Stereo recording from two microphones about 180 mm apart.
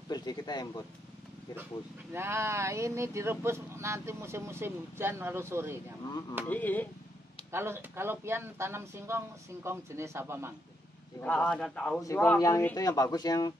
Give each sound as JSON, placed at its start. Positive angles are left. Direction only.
{"t": 0.1, "sound": "speech", "side_deg": 20}
{"t": 2.1, "sound": "speech", "side_deg": -15}
{"t": 6.5, "sound": "speech", "side_deg": 10}
{"t": 7.5, "sound": "speech", "side_deg": -15}
{"t": 11.1, "sound": "a man's voice", "side_deg": 5}
{"t": 12.0, "sound": "speech", "side_deg": 15}